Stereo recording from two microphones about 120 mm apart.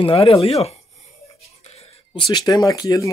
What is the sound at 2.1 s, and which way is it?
Speech, 40° left (ahead or behind).